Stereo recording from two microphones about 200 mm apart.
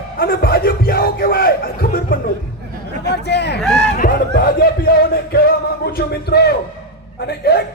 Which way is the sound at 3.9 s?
50° left (ahead or behind).